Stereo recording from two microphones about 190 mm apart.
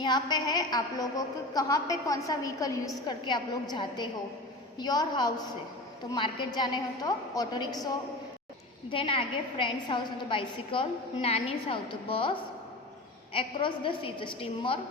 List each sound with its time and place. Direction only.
0.0 s a woman's voice: 20° left (ahead or behind)